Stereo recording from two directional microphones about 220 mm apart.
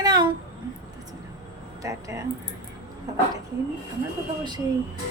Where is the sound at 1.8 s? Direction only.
15° right (ahead or behind).